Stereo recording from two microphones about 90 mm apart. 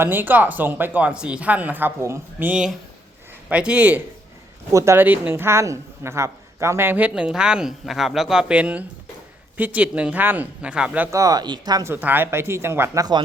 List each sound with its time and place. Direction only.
0.0 s speech: 20° right (ahead or behind)
2.5 s a woman's voice: 10° right (ahead or behind)
4.7 s speech: 35° right (ahead or behind)
4.9 s a woman's voice: 20° right (ahead or behind)
11.1 s speech: 40° right (ahead or behind)
11.8 s speech: 25° right (ahead or behind)
13.0 s speech: 50° right (ahead or behind)